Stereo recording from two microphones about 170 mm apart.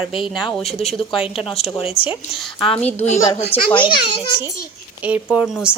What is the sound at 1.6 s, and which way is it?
A child's voice, 35° left (ahead or behind).